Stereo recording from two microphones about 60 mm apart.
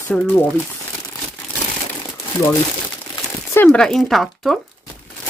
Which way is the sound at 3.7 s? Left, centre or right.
Centre.